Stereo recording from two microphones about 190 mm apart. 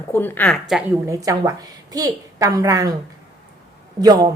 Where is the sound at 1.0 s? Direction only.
15° right (ahead or behind).